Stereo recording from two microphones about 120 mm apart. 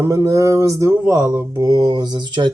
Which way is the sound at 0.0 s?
25° right (ahead or behind).